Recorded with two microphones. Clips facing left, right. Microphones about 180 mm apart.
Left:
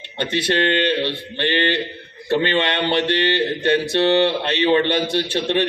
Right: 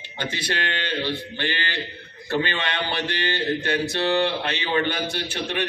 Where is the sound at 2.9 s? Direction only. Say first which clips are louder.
Left 8 dB; 25° left (ahead or behind).